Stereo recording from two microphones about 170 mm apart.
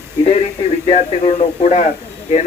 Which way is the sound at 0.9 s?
40° left (ahead or behind).